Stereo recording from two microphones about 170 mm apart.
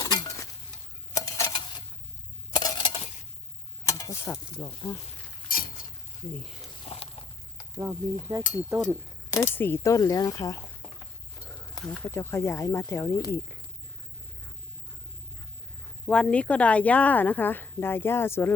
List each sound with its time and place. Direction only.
0.0 s chink: 20° left (ahead or behind)
1.1 s a sound: 20° left (ahead or behind)
3.8 s a sound: 20° left (ahead or behind)
4.6 s a woman's voice: 15° left (ahead or behind)
5.5 s cutlery: 55° left (ahead or behind)
6.8 s walk: 35° left (ahead or behind)
7.7 s speech: 15° right (ahead or behind)
9.3 s speech: 15° left (ahead or behind)
10.8 s a sound: centre (ahead or behind)
11.3 s a sound: 20° left (ahead or behind)
11.8 s a woman's voice: 5° left (ahead or behind)
16.0 s a woman's voice: 5° left (ahead or behind)